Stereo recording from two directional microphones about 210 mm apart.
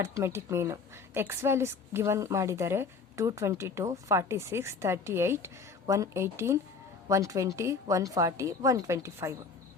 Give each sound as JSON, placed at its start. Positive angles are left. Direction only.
{"t": 0.0, "sound": "a woman's voice", "side_deg": -10}